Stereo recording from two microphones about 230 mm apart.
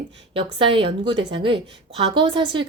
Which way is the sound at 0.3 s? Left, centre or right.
Right.